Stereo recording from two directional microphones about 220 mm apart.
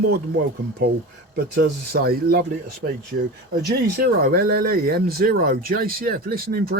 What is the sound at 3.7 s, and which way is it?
Speech, 45° right (ahead or behind).